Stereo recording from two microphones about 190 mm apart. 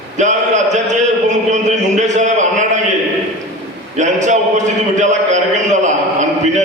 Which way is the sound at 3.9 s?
40° right (ahead or behind).